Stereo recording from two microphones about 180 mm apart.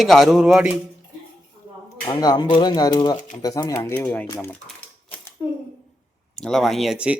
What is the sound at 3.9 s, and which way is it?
Speech, 5° left (ahead or behind).